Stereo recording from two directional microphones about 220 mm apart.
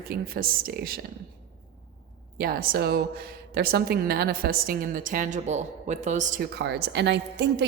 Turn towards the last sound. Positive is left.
turn(degrees=-50)  # may be behind; listen again after turning